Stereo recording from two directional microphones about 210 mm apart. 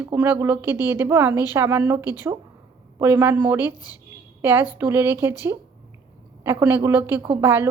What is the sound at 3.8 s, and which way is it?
Speech, 20° left (ahead or behind).